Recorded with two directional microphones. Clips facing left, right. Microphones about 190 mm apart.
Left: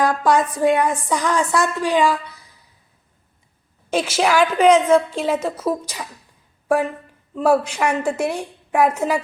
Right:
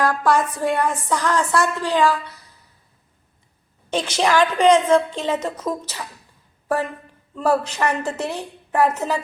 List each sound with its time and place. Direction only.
0.0 s a woman's voice: 15° left (ahead or behind)
3.8 s a woman's voice: 10° left (ahead or behind)
7.3 s a woman's voice: 10° left (ahead or behind)